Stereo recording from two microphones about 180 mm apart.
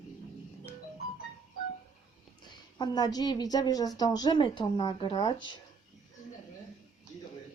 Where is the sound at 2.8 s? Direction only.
20° left (ahead or behind).